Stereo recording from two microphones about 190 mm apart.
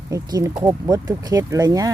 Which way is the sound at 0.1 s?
15° right (ahead or behind).